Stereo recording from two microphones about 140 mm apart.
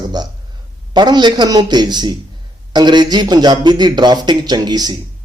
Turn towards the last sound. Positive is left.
turn(degrees=-30)  # may be behind; listen again after turning